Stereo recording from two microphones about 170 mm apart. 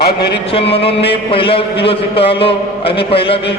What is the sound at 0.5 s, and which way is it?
A man's voice, 35° left (ahead or behind).